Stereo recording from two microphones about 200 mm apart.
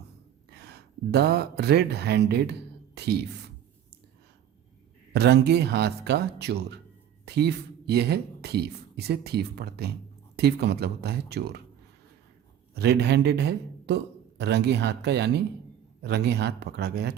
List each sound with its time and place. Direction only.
0.5 s speech: 55° right (ahead or behind)
5.1 s a man's voice: 55° right (ahead or behind)
12.7 s a man's voice: 55° right (ahead or behind)